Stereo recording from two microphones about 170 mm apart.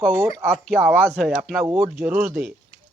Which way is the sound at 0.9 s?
5° left (ahead or behind).